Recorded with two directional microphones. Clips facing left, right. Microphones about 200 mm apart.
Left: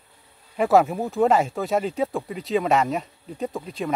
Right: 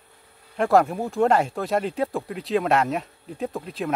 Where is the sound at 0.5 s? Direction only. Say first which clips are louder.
Left 1 dB; centre (ahead or behind).